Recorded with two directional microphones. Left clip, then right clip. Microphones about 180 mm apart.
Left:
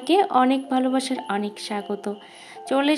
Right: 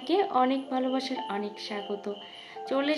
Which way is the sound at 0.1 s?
40° left (ahead or behind).